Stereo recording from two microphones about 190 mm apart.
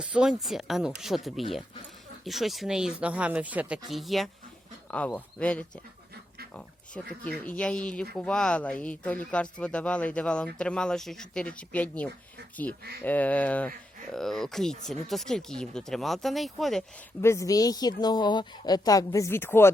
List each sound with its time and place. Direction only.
0.0 s speech: 5° right (ahead or behind)
17.2 s speech: 15° left (ahead or behind)